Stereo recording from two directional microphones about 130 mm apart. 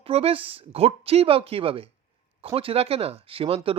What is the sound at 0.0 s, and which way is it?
Speech, 50° right (ahead or behind).